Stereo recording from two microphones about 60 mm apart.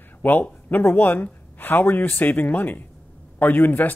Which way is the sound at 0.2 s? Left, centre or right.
Left.